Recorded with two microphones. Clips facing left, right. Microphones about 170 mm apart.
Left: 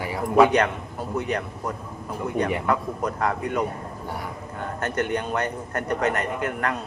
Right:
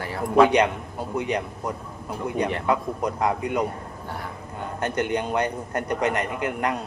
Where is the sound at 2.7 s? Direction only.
15° right (ahead or behind).